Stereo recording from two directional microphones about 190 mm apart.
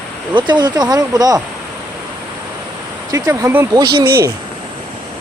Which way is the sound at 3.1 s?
15° right (ahead or behind).